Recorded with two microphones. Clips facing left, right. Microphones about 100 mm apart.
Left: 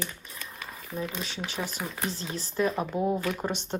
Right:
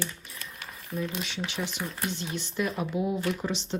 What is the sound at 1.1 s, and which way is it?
Speech, 35° left (ahead or behind).